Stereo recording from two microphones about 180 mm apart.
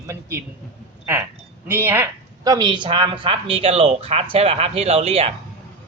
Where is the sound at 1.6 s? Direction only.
10° right (ahead or behind); by 5.3 s 35° right (ahead or behind).